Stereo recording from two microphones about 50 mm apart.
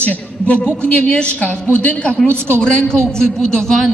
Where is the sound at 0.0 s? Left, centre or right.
Left.